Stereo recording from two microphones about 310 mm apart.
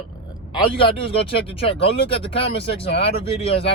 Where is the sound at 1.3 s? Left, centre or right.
Centre.